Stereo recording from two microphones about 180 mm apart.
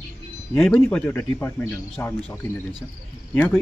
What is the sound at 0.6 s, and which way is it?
A man's voice, 5° left (ahead or behind).